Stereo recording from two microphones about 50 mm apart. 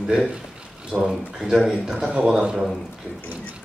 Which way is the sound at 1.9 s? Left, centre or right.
Right.